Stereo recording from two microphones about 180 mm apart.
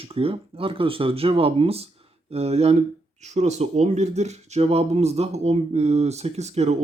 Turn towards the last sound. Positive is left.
turn(degrees=-40)  # may be behind; listen again after turning